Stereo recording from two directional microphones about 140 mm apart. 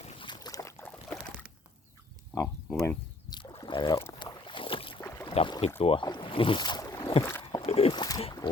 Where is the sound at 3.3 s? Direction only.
30° left (ahead or behind).